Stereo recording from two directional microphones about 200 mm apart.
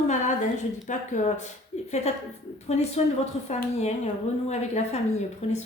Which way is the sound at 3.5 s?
35° left (ahead or behind).